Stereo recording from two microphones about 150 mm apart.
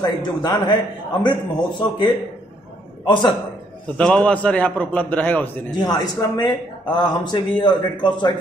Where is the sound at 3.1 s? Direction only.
30° left (ahead or behind).